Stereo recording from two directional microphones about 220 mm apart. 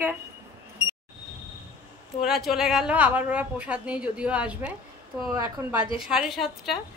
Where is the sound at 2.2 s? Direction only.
Centre (ahead or behind).